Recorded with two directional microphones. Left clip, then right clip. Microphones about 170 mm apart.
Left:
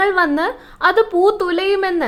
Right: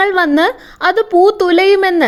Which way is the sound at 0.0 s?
45° right (ahead or behind).